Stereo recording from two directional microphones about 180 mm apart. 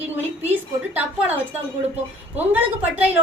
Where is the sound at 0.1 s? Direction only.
10° right (ahead or behind).